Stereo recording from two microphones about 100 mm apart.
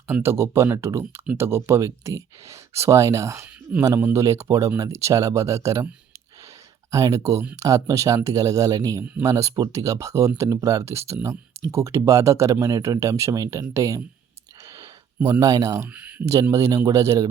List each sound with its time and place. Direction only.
0.1 s speech: 25° right (ahead or behind)
6.9 s speech: 35° right (ahead or behind)
15.3 s speech: 35° right (ahead or behind)
15.9 s speech: 15° right (ahead or behind)
16.3 s speech: 35° right (ahead or behind)